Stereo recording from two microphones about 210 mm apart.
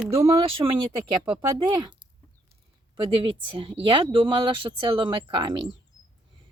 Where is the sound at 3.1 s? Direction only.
25° right (ahead or behind).